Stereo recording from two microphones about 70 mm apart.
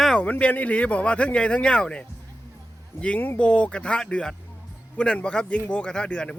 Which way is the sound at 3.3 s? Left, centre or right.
Centre.